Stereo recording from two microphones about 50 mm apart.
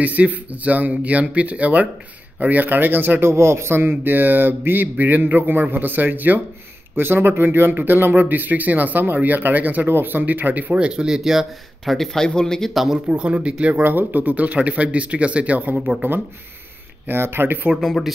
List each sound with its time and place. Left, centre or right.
0.0 s speech: right
3.2 s speech: right
9.8 s speech: right
10.8 s speech: centre
11.8 s speech: centre
12.7 s speech: centre
13.1 s speech: right
13.8 s speech: right
17.1 s speech: right
17.7 s speech: centre